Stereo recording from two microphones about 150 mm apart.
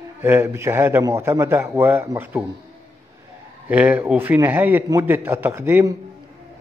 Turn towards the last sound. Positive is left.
turn(degrees=-15)  # may be behind; listen again after turning